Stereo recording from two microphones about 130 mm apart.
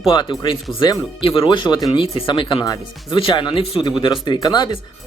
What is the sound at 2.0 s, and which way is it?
Speech, 45° left (ahead or behind).